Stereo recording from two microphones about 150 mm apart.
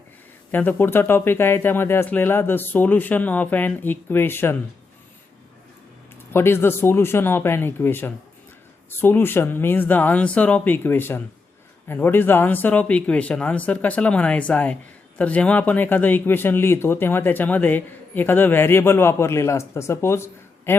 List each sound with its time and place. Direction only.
0.5 s speech: 15° left (ahead or behind)
6.3 s speech: 15° left (ahead or behind)